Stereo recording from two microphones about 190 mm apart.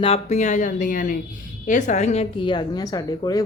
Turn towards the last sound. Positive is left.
turn(degrees=20)  # may be behind; listen again after turning